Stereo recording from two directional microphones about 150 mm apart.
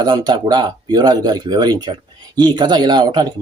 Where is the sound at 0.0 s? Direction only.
30° right (ahead or behind).